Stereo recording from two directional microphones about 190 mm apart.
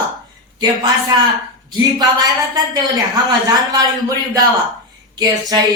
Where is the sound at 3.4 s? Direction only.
20° right (ahead or behind).